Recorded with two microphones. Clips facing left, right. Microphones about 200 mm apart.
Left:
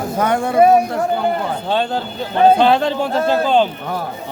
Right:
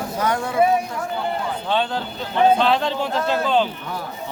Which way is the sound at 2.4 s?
50° left (ahead or behind).